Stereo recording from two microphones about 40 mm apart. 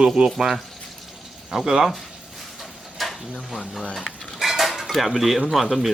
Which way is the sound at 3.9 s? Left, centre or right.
Centre.